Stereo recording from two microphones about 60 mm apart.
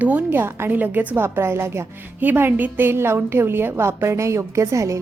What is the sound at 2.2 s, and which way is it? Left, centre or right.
A woman's voice, right.